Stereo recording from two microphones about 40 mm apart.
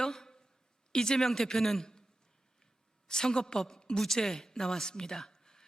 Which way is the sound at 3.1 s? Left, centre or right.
Centre.